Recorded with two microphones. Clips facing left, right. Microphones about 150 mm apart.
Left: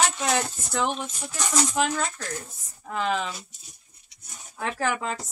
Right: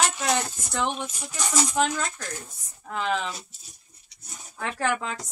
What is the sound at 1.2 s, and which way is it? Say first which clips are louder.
Speech: left 1 dB; 10° right (ahead or behind).